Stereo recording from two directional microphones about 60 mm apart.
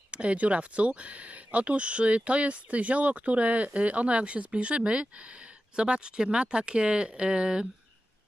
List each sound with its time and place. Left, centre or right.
0.1 s speech: centre